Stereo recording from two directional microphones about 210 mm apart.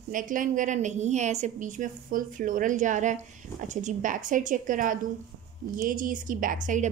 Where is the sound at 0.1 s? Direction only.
40° right (ahead or behind).